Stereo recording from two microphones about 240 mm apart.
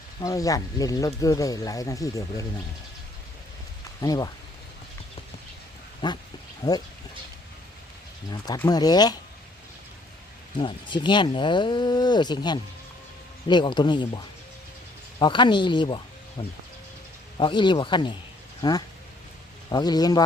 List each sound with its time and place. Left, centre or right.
0.2 s speech: centre
4.0 s speech: centre
6.0 s speech: centre
8.3 s speech: centre
10.6 s speech: centre
15.2 s speech: centre